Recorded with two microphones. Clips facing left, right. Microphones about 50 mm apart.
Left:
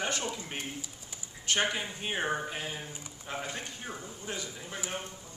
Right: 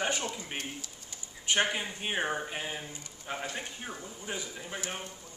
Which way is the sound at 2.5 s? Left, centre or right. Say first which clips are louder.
Right 1 dB; centre.